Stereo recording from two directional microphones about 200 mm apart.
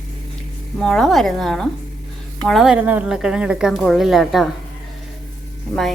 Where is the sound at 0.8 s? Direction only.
Centre (ahead or behind).